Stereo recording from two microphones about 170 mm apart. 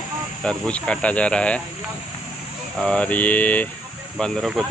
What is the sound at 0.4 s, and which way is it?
Speech, 5° left (ahead or behind).